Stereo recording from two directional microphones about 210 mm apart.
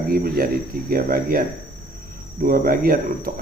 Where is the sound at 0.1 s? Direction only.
45° right (ahead or behind).